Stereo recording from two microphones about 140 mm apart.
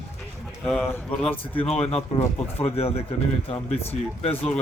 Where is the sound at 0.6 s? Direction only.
5° left (ahead or behind).